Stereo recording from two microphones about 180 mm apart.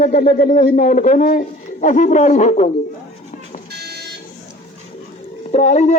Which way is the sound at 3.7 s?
65° right (ahead or behind).